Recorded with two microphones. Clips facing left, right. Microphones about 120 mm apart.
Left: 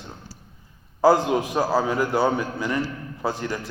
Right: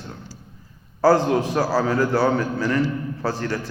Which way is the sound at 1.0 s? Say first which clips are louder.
Right 1 dB; 15° left (ahead or behind).